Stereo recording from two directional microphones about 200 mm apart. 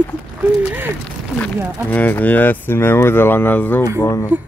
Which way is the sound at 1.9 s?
10° left (ahead or behind).